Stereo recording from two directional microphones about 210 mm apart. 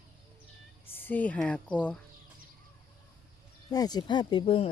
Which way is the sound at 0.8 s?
10° left (ahead or behind).